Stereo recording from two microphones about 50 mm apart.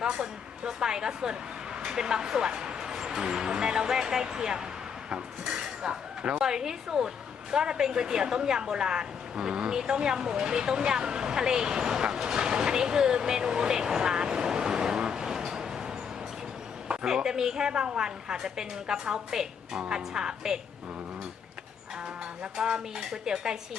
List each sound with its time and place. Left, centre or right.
0.0 s speech: centre
17.2 s speech: centre
22.5 s speech: centre